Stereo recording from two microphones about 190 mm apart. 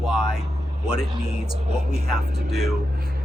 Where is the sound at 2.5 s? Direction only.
Centre (ahead or behind).